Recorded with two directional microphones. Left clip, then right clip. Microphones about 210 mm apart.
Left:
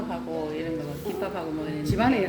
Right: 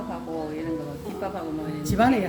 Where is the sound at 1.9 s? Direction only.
55° right (ahead or behind).